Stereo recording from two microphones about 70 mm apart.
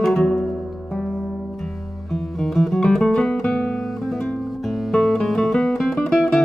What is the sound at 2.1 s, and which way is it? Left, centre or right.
Music, centre.